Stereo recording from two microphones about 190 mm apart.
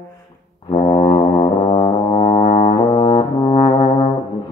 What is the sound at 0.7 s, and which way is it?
Brass instrument, 25° left (ahead or behind).